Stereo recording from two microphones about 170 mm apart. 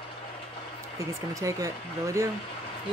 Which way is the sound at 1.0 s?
20° right (ahead or behind).